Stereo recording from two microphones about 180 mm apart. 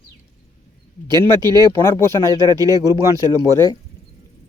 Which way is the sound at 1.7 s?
15° left (ahead or behind).